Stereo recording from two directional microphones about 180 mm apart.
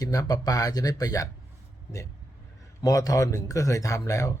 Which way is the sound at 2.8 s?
20° left (ahead or behind).